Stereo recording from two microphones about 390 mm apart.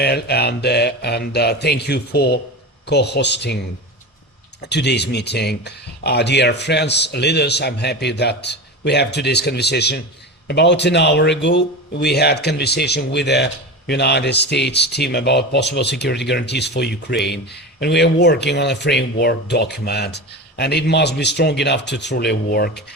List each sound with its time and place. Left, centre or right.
0.0 s speech: left
4.6 s speech: left